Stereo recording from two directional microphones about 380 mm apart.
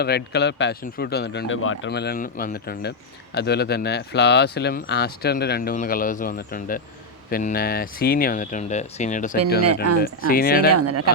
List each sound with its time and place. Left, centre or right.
0.0 s speech: left
10.8 s speech: right